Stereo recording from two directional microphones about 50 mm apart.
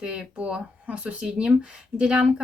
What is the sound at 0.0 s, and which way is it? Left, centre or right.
A woman's voice, centre.